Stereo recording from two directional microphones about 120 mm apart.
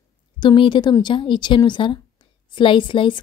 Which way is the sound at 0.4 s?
40° left (ahead or behind).